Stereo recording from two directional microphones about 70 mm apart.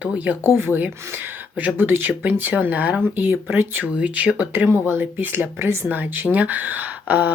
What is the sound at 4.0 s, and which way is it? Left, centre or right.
Speech, right.